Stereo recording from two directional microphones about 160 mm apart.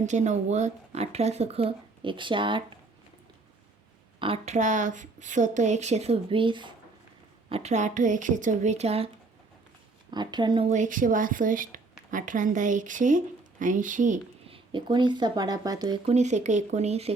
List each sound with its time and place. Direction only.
0.0 s speech: 45° right (ahead or behind); by 2.6 s 30° right (ahead or behind)
4.2 s speech: 35° right (ahead or behind)
4.5 s speech: 50° right (ahead or behind); by 6.7 s 30° right (ahead or behind)
7.5 s speech: 45° right (ahead or behind)
10.1 s speech: 25° right (ahead or behind)
10.7 s speech: 55° right (ahead or behind)
14.4 s speech: 35° right (ahead or behind)
16.0 s speech: 45° right (ahead or behind)